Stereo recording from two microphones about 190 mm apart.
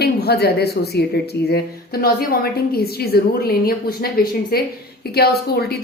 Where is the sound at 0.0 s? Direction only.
60° left (ahead or behind).